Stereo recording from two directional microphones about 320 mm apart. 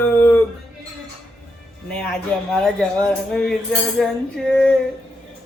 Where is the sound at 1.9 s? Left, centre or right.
Centre.